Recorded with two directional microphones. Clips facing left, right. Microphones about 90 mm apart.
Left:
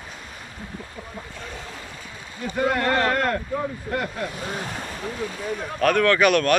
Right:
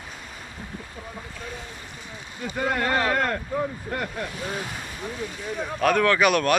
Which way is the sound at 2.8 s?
10° right (ahead or behind).